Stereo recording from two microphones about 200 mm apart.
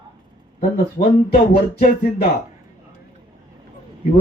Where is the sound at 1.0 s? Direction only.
35° left (ahead or behind).